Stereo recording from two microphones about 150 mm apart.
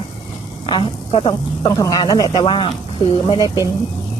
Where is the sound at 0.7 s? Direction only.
35° left (ahead or behind).